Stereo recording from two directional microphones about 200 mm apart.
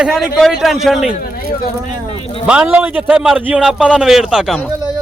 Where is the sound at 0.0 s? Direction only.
Centre (ahead or behind).